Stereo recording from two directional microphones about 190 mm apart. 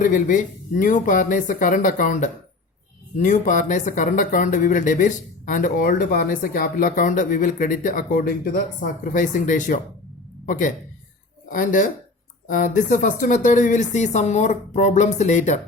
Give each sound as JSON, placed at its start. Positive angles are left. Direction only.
{"t": 0.0, "sound": "a woman's voice", "side_deg": 45}